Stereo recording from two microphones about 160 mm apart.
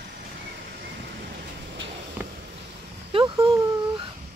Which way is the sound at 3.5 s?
25° right (ahead or behind).